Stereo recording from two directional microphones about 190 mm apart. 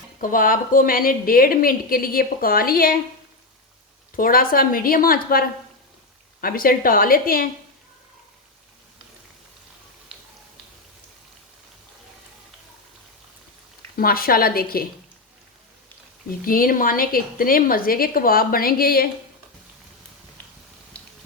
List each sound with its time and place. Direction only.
0.2 s a woman's voice: 45° left (ahead or behind)
4.1 s a woman's voice: 50° left (ahead or behind)
13.9 s a woman's voice: 50° left (ahead or behind)
16.5 s a woman's voice: 50° left (ahead or behind)